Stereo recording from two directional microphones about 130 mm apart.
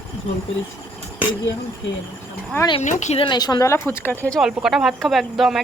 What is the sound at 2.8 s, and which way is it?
Speech, 65° left (ahead or behind).